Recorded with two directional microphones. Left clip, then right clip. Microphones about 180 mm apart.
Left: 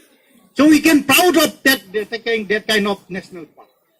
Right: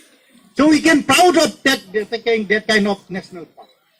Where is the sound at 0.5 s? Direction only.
35° left (ahead or behind).